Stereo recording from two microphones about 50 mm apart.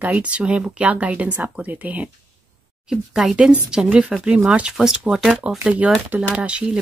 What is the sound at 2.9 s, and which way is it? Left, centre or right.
Speech, centre.